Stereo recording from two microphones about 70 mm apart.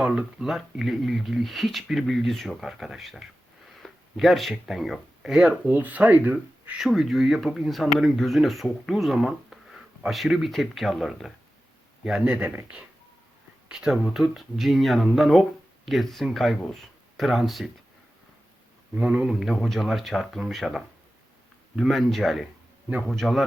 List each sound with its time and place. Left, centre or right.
0.0 s speech: centre
5.6 s speech: right
6.7 s speech: centre
12.2 s speech: centre
13.7 s speech: centre
18.9 s speech: centre